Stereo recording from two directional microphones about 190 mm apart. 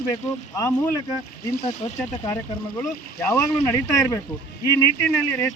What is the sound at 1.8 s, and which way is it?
Speech, 35° left (ahead or behind).